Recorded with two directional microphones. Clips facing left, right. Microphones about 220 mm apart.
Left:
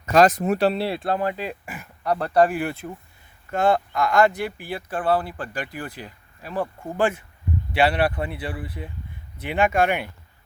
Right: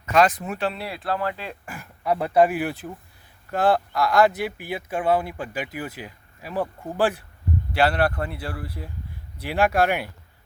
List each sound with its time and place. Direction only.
0.0 s speech: 40° left (ahead or behind); by 1.9 s 5° left (ahead or behind)
2.0 s speech: 10° right (ahead or behind)